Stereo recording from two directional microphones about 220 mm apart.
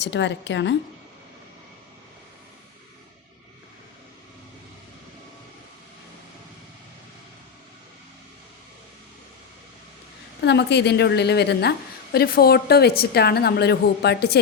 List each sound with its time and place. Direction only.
0.0 s a woman's voice: 55° left (ahead or behind)
10.4 s a woman's voice: 50° left (ahead or behind)